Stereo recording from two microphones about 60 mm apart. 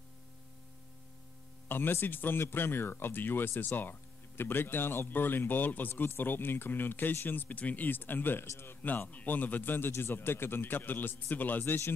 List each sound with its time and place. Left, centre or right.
1.7 s speech: left